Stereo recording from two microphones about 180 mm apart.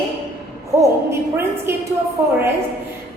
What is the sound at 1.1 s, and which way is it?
A woman's voice, 15° right (ahead or behind).